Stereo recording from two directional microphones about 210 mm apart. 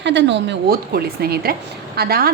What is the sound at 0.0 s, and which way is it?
A woman's voice, 55° right (ahead or behind).